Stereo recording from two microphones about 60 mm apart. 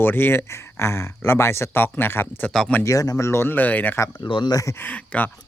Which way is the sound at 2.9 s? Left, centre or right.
Left.